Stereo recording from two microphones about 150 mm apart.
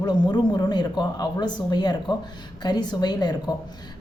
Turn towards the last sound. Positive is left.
turn(degrees=30)  # may be behind; listen again after turning